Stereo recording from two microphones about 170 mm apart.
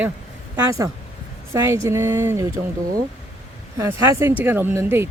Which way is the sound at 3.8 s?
15° right (ahead or behind).